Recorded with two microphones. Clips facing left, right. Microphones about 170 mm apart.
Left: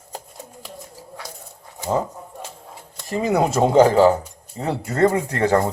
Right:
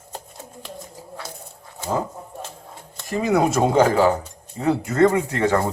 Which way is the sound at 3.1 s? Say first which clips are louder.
Even; 30° left (ahead or behind).